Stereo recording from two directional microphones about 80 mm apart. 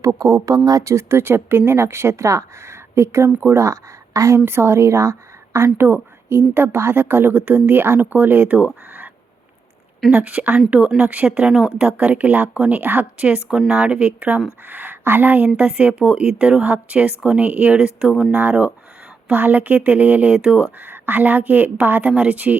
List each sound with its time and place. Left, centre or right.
0.0 s a woman's voice: right; by 9.0 s centre
10.2 s a woman's voice: centre
18.3 s a woman's voice: right